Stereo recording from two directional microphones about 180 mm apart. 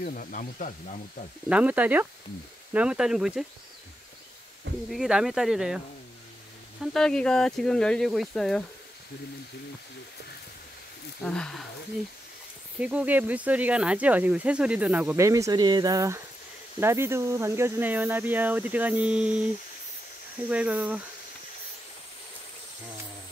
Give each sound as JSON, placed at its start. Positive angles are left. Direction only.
{"t": 0.0, "sound": "speech", "side_deg": 50}
{"t": 1.5, "sound": "speech", "side_deg": -10}
{"t": 4.9, "sound": "speech", "side_deg": 0}
{"t": 6.8, "sound": "speech", "side_deg": 0}
{"t": 11.2, "sound": "speech", "side_deg": 5}
{"t": 12.7, "sound": "speech", "side_deg": -5}